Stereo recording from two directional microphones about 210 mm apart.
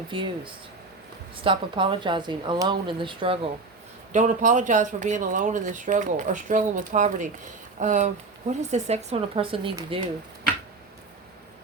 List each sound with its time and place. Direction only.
0.1 s speech: 25° right (ahead or behind)
4.1 s speech: 35° right (ahead or behind)